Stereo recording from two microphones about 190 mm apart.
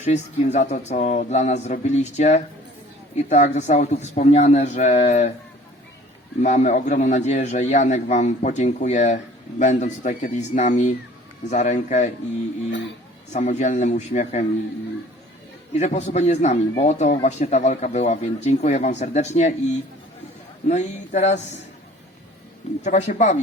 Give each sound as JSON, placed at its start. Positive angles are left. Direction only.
{"t": 0.0, "sound": "a man's voice", "side_deg": 35}
{"t": 6.4, "sound": "a man's voice", "side_deg": 40}
{"t": 13.3, "sound": "a man's voice", "side_deg": 40}
{"t": 15.7, "sound": "a man's voice", "side_deg": 35}
{"t": 20.7, "sound": "a man's voice", "side_deg": 40}
{"t": 22.8, "sound": "a man's voice", "side_deg": 40}